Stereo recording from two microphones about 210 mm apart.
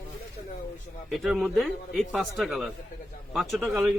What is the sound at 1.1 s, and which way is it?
Speech, centre (ahead or behind).